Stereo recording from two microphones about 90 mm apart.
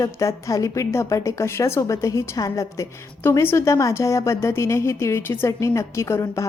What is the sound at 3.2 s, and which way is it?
A woman's voice, 25° left (ahead or behind).